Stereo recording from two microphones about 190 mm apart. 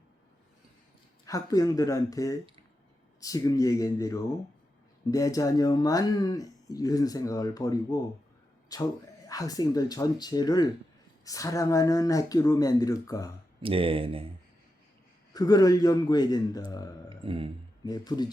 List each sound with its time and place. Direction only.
1.2 s speech: 20° left (ahead or behind)
13.6 s speech: 30° right (ahead or behind)
15.3 s speech: 20° left (ahead or behind)
17.1 s a sound: 25° right (ahead or behind)
17.8 s speech: 20° left (ahead or behind)